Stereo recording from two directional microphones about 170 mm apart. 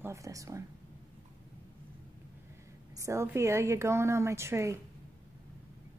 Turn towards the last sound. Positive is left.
turn(degrees=-15)  # may be behind; listen again after turning